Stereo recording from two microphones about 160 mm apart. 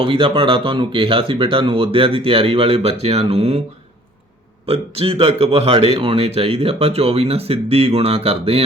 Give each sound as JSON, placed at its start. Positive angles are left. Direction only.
{"t": 0.0, "sound": "a man's voice", "side_deg": -35}
{"t": 4.6, "sound": "a man's voice", "side_deg": -40}